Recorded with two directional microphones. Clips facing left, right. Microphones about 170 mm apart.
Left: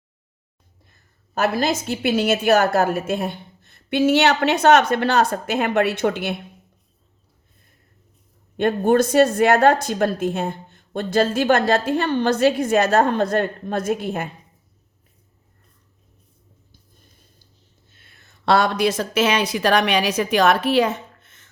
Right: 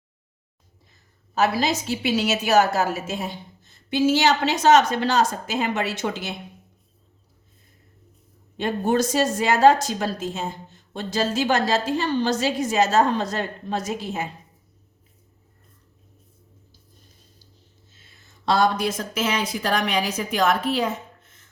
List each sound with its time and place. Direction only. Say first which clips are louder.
1.4 s speech: left 1 dB; 55° left (ahead or behind)
8.5 s speech: left 5 dB; 55° left (ahead or behind)
17.9 s speech: left 1 dB; 60° left (ahead or behind); by 21.5 s 75° left (ahead or behind)